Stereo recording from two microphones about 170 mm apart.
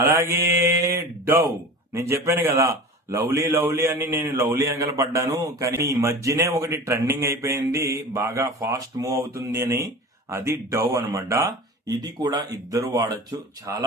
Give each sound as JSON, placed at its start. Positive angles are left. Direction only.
{"t": 0.0, "sound": "a man's voice", "side_deg": -15}